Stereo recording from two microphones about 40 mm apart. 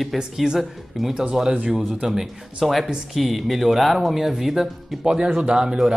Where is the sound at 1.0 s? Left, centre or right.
Centre.